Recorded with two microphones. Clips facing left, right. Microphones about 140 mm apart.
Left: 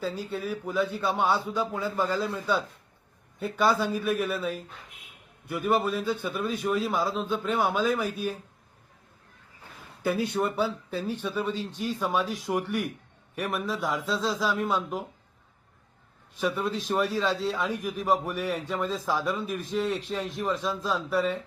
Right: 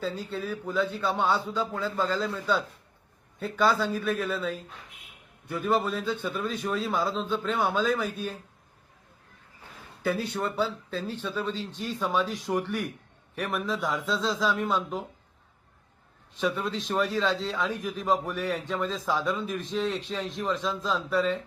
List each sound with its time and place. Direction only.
0.0 s a man's voice: 10° left (ahead or behind)
10.0 s a man's voice: 15° left (ahead or behind)
16.4 s a man's voice: 15° left (ahead or behind)